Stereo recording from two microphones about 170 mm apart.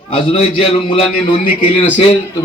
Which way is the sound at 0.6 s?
35° left (ahead or behind).